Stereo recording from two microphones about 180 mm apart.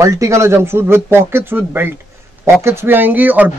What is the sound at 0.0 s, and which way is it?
A man's voice, 15° right (ahead or behind).